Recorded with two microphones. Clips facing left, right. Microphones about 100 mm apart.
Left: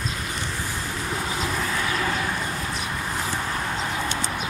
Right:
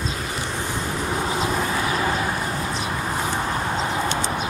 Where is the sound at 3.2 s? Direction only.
25° right (ahead or behind).